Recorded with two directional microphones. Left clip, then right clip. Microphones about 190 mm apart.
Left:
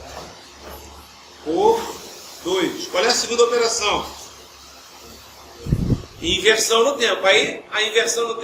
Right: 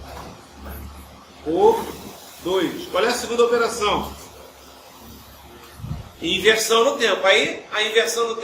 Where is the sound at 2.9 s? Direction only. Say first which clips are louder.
Left 2 dB; 15° right (ahead or behind).